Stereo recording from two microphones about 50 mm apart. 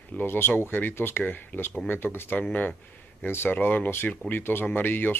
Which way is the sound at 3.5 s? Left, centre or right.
Left.